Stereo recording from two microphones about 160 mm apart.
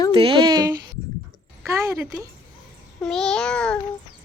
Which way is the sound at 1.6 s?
15° right (ahead or behind).